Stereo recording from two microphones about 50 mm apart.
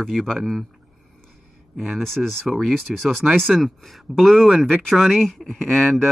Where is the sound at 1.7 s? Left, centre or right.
Centre.